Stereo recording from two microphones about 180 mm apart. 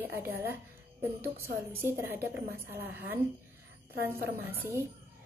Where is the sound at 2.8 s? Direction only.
60° right (ahead or behind).